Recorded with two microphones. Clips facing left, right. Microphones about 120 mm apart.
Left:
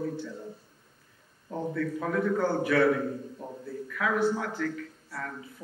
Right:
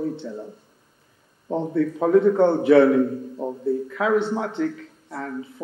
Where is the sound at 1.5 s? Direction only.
25° right (ahead or behind).